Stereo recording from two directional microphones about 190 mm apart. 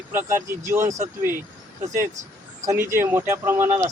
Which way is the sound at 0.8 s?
40° right (ahead or behind).